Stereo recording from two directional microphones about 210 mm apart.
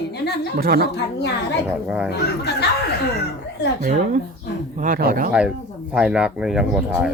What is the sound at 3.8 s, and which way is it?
Speech, 35° right (ahead or behind).